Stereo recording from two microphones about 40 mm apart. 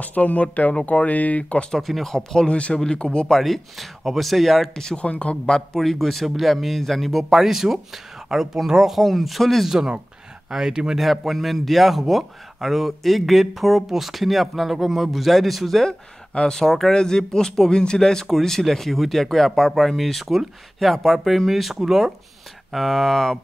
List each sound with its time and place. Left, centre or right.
0.0 s speech: left
1.4 s speech: left
1.7 s speech: centre
2.1 s speech: centre
2.5 s speech: left
3.3 s speech: centre
4.9 s speech: left
5.8 s speech: centre
10.5 s speech: centre
11.0 s speech: centre
15.9 s speech: left; by 23.4 s centre